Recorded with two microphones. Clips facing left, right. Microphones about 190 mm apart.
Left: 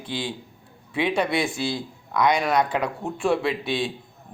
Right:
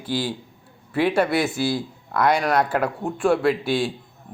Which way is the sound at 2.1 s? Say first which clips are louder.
Right 1 dB; 5° right (ahead or behind).